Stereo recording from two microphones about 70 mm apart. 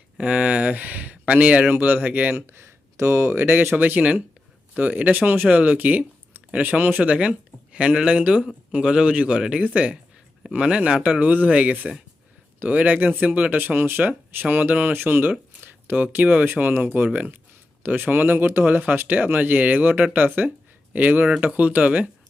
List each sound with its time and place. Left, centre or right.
0.2 s speech: centre
2.3 s speech: right; by 22.1 s centre